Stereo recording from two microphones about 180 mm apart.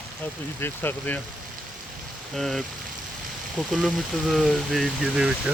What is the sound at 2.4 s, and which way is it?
Speech, centre (ahead or behind).